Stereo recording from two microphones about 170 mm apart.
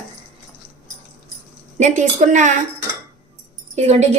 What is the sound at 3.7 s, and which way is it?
Speech, 40° right (ahead or behind).